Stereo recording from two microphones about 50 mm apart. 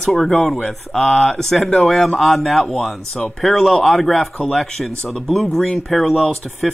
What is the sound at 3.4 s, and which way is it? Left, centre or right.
Speech, centre.